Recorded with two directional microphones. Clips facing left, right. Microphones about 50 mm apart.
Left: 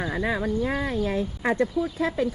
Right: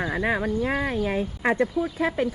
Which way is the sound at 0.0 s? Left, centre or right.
Right.